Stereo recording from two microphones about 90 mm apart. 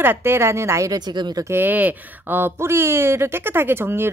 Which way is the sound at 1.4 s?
25° right (ahead or behind).